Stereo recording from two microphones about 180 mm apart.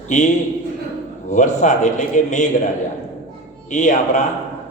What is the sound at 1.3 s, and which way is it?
A man's voice, 45° left (ahead or behind).